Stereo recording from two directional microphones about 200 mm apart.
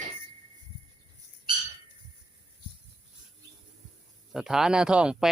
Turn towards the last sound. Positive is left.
turn(degrees=-5)  # may be behind; listen again after turning